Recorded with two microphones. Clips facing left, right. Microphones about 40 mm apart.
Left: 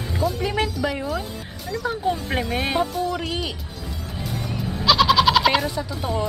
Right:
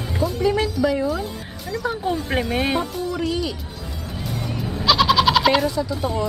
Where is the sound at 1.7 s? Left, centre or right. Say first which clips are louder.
Even; centre.